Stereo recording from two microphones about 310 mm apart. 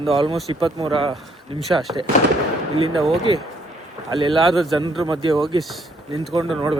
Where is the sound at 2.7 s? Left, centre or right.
Centre.